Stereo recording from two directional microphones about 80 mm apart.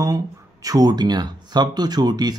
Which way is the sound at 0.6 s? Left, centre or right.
Right.